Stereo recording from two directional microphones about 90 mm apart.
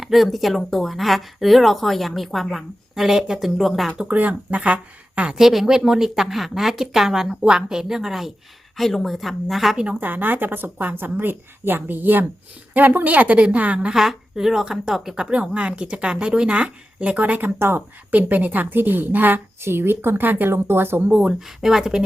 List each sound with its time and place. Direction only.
0.0 s speech: centre (ahead or behind)
10.0 s a woman's voice: 20° right (ahead or behind)
21.1 s speech: 15° right (ahead or behind)